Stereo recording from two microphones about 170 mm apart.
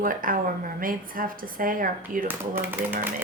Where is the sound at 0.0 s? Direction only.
55° right (ahead or behind).